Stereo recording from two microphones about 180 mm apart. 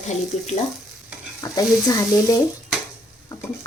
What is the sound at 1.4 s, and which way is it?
Speech, 20° left (ahead or behind).